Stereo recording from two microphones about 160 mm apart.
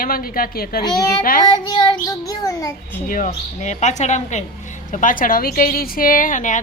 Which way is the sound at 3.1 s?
50° left (ahead or behind).